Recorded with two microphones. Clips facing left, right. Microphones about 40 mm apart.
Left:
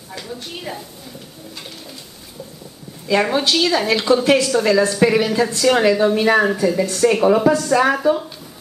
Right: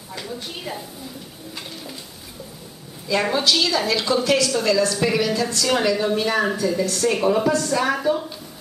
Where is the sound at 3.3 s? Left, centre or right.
Left.